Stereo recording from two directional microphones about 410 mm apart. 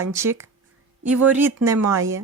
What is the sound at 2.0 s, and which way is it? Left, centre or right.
Speech, right.